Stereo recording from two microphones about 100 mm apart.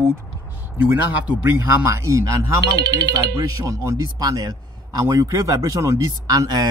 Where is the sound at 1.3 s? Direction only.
25° right (ahead or behind).